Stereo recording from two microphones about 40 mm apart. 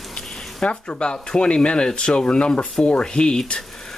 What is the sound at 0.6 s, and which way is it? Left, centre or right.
Speech, left.